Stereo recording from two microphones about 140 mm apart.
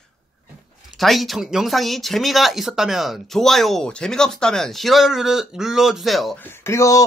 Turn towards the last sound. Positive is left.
turn(degrees=20)  # may be behind; listen again after turning